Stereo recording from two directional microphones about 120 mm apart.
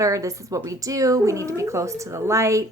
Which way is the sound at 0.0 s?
25° right (ahead or behind).